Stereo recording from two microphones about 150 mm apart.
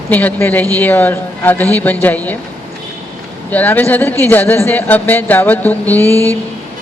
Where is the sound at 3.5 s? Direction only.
10° left (ahead or behind).